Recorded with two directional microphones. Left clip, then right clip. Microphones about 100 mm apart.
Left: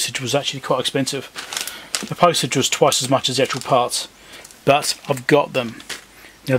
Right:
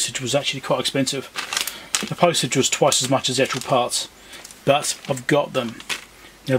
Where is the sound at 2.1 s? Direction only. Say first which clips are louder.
Left 3 dB; 25° left (ahead or behind).